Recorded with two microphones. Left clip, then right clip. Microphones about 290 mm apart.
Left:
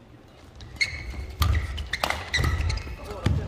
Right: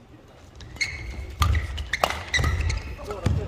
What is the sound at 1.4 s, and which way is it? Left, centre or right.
Music, centre.